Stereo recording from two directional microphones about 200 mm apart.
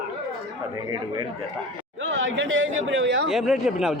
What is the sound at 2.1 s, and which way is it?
Speech, 70° right (ahead or behind).